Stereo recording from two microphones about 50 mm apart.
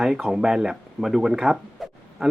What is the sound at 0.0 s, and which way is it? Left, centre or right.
Speech, centre.